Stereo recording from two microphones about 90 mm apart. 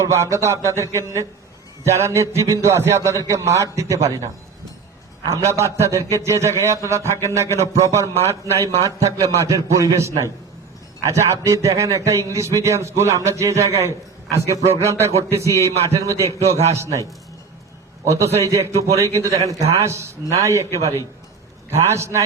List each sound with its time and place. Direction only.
0.0 s a man's voice: 30° right (ahead or behind)
5.3 s a man's voice: 35° right (ahead or behind)
18.1 s a man's voice: 35° right (ahead or behind)
21.7 s a man's voice: 30° right (ahead or behind)